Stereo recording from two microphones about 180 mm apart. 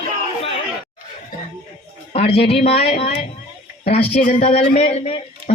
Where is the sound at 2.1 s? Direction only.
35° left (ahead or behind).